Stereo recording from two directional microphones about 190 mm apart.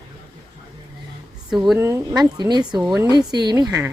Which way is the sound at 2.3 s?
20° right (ahead or behind).